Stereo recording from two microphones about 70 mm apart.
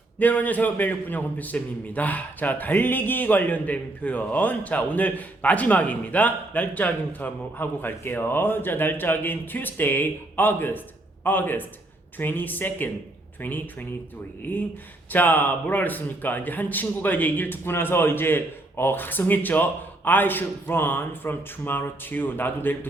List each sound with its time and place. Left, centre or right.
0.2 s a man's voice: left
15.1 s a man's voice: left